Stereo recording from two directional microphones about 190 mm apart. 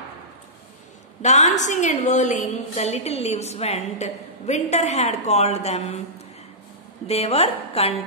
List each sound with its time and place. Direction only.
1.2 s a woman's voice: 40° left (ahead or behind)
7.1 s a woman's voice: 35° left (ahead or behind)